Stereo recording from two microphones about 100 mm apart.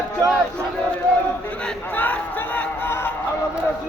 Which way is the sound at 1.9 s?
20° left (ahead or behind).